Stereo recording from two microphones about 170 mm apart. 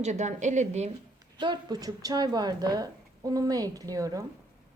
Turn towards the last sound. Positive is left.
turn(degrees=-20)  # may be behind; listen again after turning